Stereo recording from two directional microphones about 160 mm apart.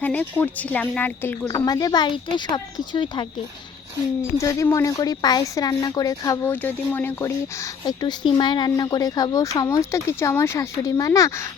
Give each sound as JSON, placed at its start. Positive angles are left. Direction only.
{"t": 0.0, "sound": "speech", "side_deg": 10}
{"t": 1.5, "sound": "a woman's voice", "side_deg": 25}
{"t": 4.4, "sound": "a woman's voice", "side_deg": 20}